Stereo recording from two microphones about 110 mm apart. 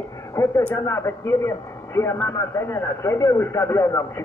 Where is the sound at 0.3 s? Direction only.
25° left (ahead or behind).